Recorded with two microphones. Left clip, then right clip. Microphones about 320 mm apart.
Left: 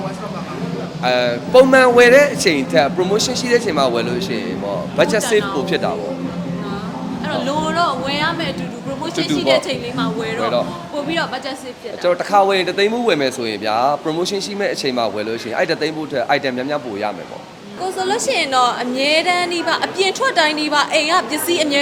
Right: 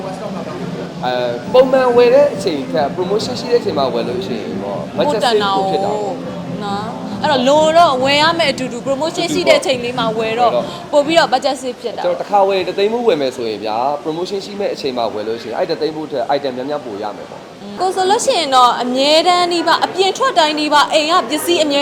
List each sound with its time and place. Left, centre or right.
1.0 s a man's voice: left
5.2 s a woman's voice: right
7.2 s a woman's voice: right
8.0 s a woman's voice: right
12.0 s speech: left
17.7 s a woman's voice: centre